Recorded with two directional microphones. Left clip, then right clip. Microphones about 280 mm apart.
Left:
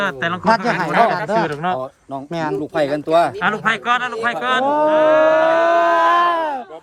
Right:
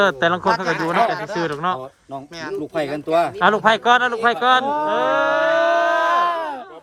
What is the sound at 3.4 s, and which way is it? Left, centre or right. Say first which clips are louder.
A man's voice: right 3 dB; centre.